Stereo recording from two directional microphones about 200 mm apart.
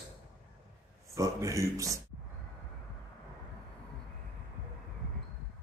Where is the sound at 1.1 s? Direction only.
15° right (ahead or behind).